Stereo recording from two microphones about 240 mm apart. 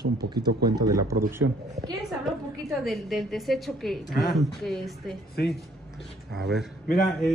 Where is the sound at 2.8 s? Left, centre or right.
Centre.